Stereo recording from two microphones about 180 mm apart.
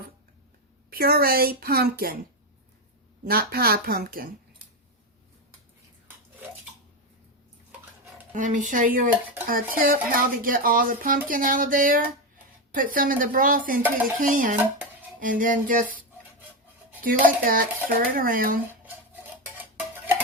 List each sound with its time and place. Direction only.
0.9 s a woman's voice: 55° right (ahead or behind)
3.2 s a woman's voice: 55° right (ahead or behind)
8.4 s speech: 45° right (ahead or behind)